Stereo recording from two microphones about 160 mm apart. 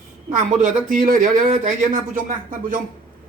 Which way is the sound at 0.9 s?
55° right (ahead or behind).